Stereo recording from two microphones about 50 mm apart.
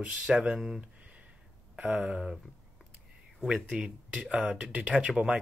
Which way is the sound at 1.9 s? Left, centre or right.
Centre.